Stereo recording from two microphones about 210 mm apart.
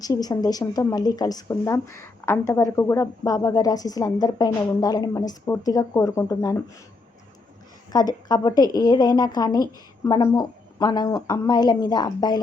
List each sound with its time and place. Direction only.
0.0 s speech: 15° left (ahead or behind)
7.9 s speech: 20° left (ahead or behind)